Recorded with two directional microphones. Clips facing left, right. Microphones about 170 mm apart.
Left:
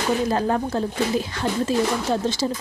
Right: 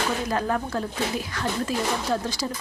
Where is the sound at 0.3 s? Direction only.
30° left (ahead or behind).